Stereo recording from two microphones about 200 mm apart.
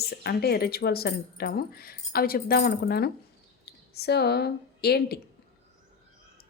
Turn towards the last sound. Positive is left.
turn(degrees=55)  # may be behind; listen again after turning